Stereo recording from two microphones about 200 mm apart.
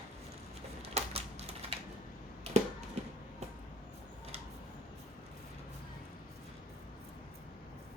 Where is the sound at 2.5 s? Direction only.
30° right (ahead or behind).